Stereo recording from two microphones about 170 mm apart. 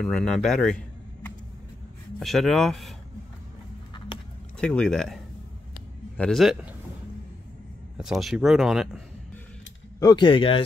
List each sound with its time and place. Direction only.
0.0 s speech: 5° left (ahead or behind)
2.1 s speech: centre (ahead or behind)
4.6 s speech: 5° left (ahead or behind)
8.0 s speech: centre (ahead or behind)
9.9 s speech: 25° left (ahead or behind)